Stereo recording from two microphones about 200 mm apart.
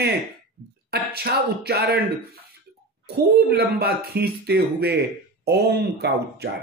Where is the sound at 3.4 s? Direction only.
50° right (ahead or behind).